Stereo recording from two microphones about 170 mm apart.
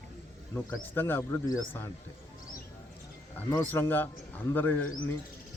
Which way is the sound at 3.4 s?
10° left (ahead or behind).